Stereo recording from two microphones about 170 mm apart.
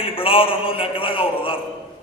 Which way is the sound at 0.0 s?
30° left (ahead or behind).